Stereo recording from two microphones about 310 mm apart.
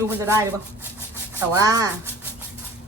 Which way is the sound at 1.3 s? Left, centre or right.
Centre.